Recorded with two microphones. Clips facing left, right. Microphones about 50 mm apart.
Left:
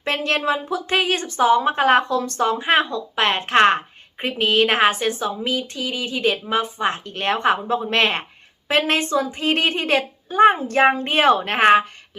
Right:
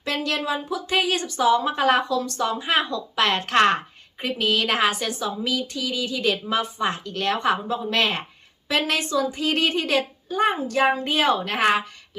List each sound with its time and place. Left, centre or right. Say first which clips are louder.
0.0 s speech: left 4 dB; left